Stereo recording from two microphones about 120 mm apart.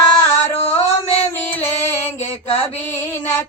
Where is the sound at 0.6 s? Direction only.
60° left (ahead or behind).